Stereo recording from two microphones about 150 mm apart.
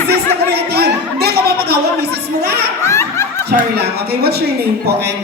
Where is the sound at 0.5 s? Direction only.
90° right.